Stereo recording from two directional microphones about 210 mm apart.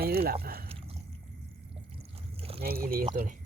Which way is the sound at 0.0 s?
45° right (ahead or behind).